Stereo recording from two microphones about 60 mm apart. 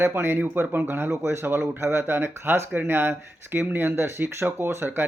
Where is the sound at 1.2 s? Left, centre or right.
Right.